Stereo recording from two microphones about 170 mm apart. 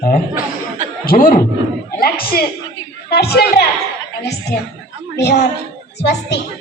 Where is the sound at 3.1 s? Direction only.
70° left (ahead or behind).